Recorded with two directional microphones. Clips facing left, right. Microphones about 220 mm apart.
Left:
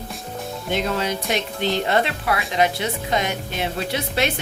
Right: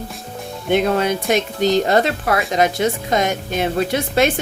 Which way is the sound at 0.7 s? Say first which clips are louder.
Right 7 dB; 55° right (ahead or behind).